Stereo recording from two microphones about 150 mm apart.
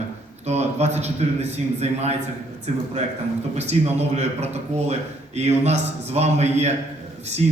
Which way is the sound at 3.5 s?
50° right (ahead or behind).